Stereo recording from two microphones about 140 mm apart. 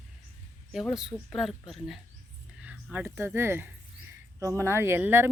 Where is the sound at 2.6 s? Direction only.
15° right (ahead or behind).